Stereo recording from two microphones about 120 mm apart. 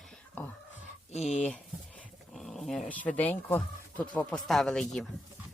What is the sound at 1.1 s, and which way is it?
Speech, 70° left (ahead or behind).